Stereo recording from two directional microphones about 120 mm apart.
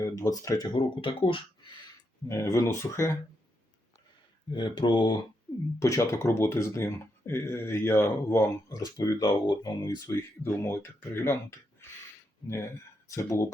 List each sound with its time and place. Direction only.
0.0 s speech: 30° left (ahead or behind)
0.8 s speech: 45° left (ahead or behind)
2.2 s speech: 25° left (ahead or behind)
4.5 s speech: 40° left (ahead or behind)
5.8 s speech: 25° left (ahead or behind)
10.1 s speech: 20° left (ahead or behind)